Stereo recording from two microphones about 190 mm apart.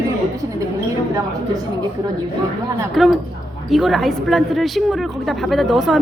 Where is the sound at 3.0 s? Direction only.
Centre (ahead or behind).